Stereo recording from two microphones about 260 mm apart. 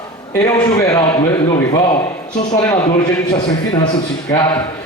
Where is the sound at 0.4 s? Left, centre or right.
Centre.